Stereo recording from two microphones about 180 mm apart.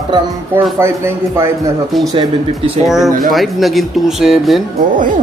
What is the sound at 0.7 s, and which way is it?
Speech, 15° right (ahead or behind).